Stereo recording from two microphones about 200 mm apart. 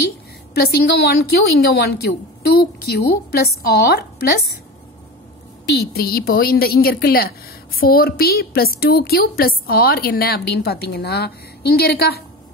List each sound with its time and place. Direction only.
0.6 s a woman's voice: 50° left (ahead or behind)
5.7 s a woman's voice: 50° left (ahead or behind)